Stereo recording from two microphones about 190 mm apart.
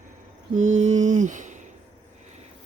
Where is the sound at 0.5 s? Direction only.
40° right (ahead or behind).